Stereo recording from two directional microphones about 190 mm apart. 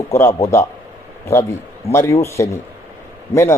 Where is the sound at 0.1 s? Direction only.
15° left (ahead or behind).